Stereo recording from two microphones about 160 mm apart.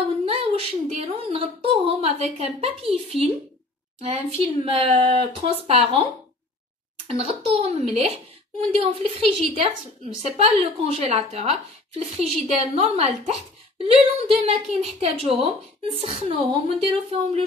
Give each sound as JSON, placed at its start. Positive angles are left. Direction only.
{"t": 0.2, "sound": "a woman's voice", "side_deg": -35}
{"t": 4.0, "sound": "a woman's voice", "side_deg": -40}
{"t": 7.1, "sound": "a woman's voice", "side_deg": -40}